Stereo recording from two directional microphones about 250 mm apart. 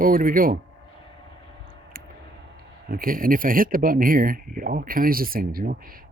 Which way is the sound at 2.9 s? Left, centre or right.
Right.